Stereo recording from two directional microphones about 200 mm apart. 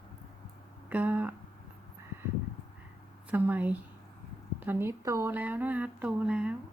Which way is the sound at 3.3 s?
10° right (ahead or behind).